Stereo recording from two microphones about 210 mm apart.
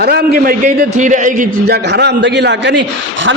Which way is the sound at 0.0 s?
50° right (ahead or behind).